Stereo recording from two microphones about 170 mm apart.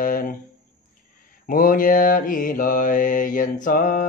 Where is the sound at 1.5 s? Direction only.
55° left (ahead or behind).